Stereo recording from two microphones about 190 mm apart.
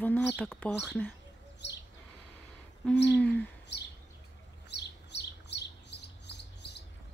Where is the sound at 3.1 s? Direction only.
5° left (ahead or behind).